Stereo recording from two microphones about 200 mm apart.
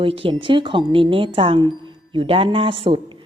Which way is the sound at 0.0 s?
25° right (ahead or behind).